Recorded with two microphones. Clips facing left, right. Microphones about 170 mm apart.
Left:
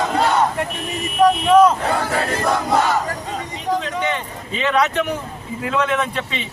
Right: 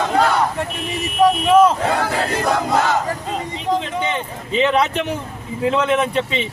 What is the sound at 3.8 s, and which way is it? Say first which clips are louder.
Speech: right 1 dB; 25° right (ahead or behind).